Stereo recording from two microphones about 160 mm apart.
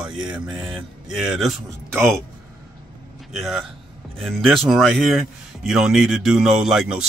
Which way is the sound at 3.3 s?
Centre (ahead or behind).